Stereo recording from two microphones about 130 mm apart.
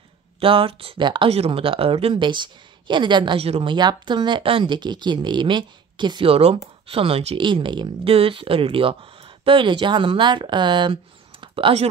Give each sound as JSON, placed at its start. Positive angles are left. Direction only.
{"t": 0.4, "sound": "speech", "side_deg": -45}
{"t": 1.3, "sound": "speech", "side_deg": -50}
{"t": 3.7, "sound": "speech", "side_deg": -35}